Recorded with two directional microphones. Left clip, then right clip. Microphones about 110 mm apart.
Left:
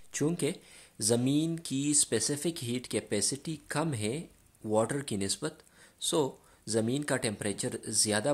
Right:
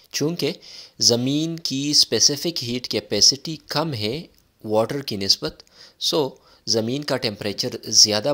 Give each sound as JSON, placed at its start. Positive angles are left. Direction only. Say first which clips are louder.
{"t": 0.1, "sound": "speech", "louder": "right 8 dB", "side_deg": -20}
{"t": 4.6, "sound": "speech", "louder": "right 8 dB", "side_deg": -20}